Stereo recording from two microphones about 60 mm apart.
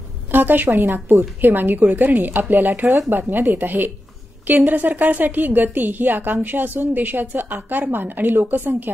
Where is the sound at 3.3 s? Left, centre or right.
Right.